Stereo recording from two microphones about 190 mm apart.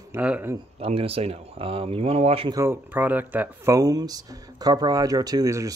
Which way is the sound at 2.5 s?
15° right (ahead or behind).